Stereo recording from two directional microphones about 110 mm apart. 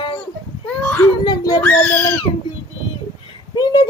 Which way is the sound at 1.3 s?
35° left (ahead or behind).